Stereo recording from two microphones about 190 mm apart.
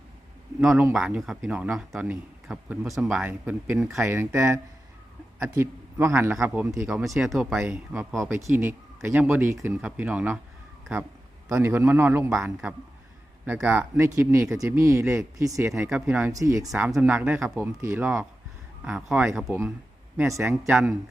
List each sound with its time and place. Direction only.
0.6 s a man's voice: centre (ahead or behind)
11.4 s a man's voice: 10° right (ahead or behind)
16.8 s a man's voice: 5° right (ahead or behind)
19.5 s a man's voice: 15° right (ahead or behind)